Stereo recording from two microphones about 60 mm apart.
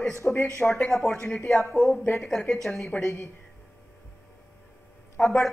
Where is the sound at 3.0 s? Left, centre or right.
Left.